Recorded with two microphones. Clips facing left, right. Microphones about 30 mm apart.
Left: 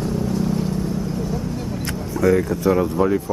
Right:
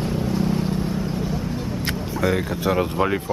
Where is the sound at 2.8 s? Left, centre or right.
Right.